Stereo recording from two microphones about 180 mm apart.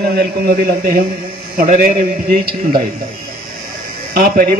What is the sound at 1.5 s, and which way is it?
A man's voice, 50° right (ahead or behind).